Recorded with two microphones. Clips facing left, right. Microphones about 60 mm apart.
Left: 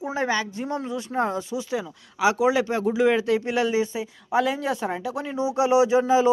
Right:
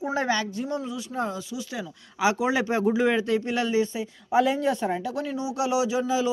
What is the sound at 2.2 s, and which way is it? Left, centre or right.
Speech, centre.